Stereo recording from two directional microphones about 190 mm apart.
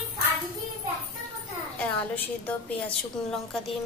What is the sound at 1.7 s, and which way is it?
A woman's voice, 10° left (ahead or behind).